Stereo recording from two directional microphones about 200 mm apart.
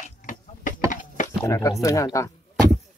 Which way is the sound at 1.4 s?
15° left (ahead or behind).